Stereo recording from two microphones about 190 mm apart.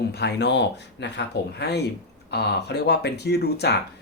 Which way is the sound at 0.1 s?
60° left (ahead or behind).